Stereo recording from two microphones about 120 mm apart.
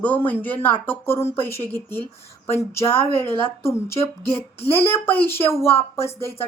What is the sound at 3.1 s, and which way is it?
Speech, 20° left (ahead or behind).